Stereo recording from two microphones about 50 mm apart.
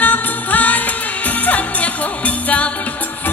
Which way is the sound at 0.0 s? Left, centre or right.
Left.